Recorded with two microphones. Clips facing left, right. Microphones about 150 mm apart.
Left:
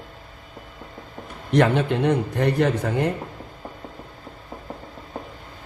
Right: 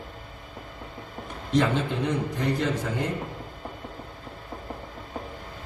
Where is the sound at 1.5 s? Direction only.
65° left (ahead or behind).